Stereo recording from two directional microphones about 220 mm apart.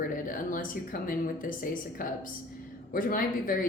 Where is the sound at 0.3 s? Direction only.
40° left (ahead or behind).